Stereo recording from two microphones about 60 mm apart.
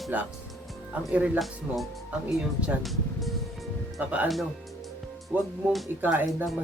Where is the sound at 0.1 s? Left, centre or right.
Right.